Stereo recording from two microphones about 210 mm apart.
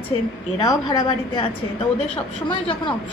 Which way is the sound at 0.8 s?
20° left (ahead or behind).